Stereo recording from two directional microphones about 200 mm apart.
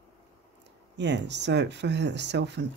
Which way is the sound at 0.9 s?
60° right (ahead or behind).